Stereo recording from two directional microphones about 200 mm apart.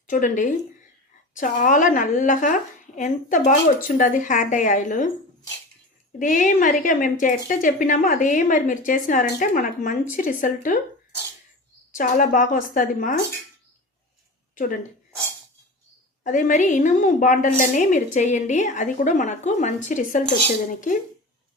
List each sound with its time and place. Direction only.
0.1 s speech: 40° left (ahead or behind)
6.1 s speech: 40° left (ahead or behind)
11.9 s speech: 40° left (ahead or behind)
14.5 s a woman's voice: 40° left (ahead or behind)
16.2 s speech: 40° left (ahead or behind)